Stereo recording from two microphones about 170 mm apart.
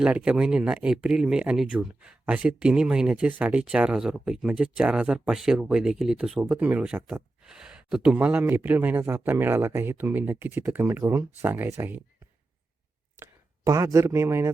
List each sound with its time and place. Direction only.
0.0 s speech: 5° right (ahead or behind)
13.7 s speech: 20° right (ahead or behind)